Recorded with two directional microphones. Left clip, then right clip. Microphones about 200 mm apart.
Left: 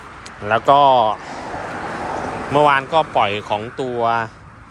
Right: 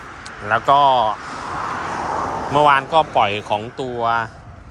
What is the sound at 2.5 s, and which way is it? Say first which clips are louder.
Speech: even; 5° right (ahead or behind).